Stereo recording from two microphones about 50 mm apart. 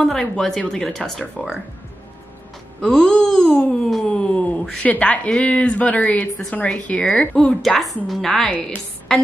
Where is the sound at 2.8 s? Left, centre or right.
Centre.